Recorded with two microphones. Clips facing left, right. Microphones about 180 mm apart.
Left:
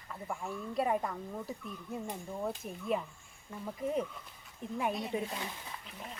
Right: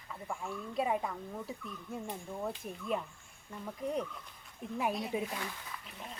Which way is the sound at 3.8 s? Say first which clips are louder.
Left 2 dB; 5° left (ahead or behind).